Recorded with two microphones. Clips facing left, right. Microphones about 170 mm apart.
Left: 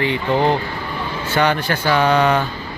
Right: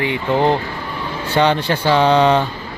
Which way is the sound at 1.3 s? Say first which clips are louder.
Right 2 dB; 30° right (ahead or behind).